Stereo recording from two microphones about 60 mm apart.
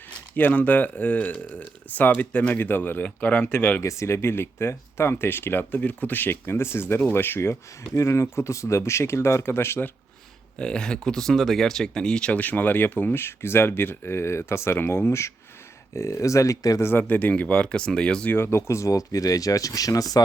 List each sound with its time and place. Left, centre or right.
0.3 s speech: left
3.8 s speech: left
10.6 s speech: centre
12.3 s speech: left
17.0 s speech: left
18.3 s speech: left
18.5 s speech: left